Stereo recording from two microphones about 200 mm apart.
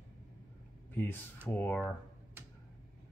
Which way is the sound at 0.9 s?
10° left (ahead or behind).